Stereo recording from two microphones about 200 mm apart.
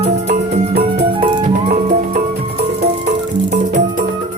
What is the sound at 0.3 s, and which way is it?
Music, 50° right (ahead or behind).